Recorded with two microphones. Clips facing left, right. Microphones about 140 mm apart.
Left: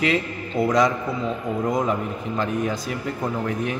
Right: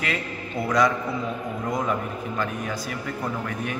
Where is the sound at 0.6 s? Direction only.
Centre (ahead or behind).